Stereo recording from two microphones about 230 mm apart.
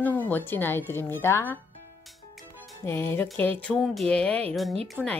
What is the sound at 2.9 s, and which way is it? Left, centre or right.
A woman's voice, centre.